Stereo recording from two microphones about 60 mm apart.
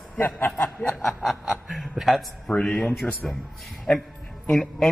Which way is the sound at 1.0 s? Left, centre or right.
Centre.